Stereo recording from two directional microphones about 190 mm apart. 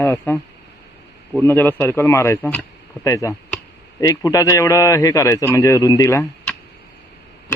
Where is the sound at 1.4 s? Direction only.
10° left (ahead or behind).